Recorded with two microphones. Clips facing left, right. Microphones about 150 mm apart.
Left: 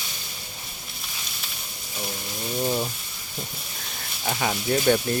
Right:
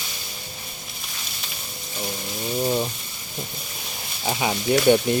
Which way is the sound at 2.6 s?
5° right (ahead or behind).